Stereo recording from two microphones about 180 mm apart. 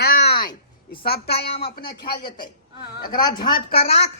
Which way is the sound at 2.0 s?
25° left (ahead or behind).